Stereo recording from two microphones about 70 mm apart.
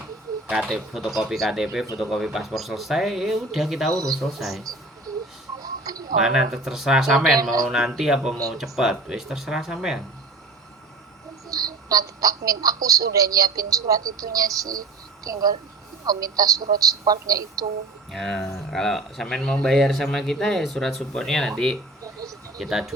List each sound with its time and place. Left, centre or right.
0.4 s speech: centre
0.7 s speech: centre
5.5 s a sound: right
6.2 s speech: centre
11.4 s speech: right
18.1 s speech: centre
22.0 s a sound: right
22.5 s speech: centre